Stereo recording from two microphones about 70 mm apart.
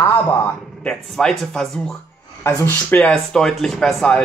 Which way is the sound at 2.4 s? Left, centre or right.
Left.